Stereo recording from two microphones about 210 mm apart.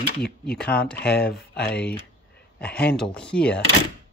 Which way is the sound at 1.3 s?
50° left (ahead or behind).